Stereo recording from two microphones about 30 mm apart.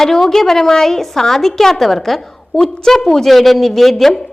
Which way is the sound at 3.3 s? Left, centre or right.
Centre.